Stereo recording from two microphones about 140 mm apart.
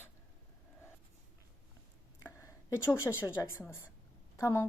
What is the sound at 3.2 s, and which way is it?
A woman's voice, 20° left (ahead or behind).